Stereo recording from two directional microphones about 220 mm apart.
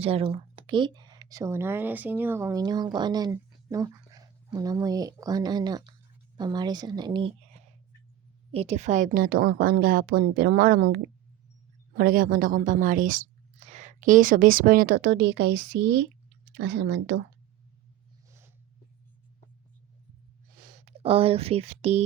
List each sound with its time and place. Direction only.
0.0 s a woman's voice: 25° right (ahead or behind); by 15.4 s 50° right (ahead or behind)
16.6 s a woman's voice: 50° right (ahead or behind)
18.3 s a sound: 10° right (ahead or behind)
20.6 s speech: 35° right (ahead or behind)